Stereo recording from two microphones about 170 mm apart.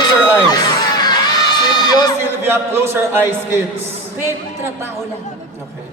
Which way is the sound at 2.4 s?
15° right (ahead or behind).